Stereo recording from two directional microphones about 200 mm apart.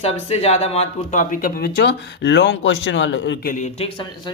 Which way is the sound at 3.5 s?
35° left (ahead or behind).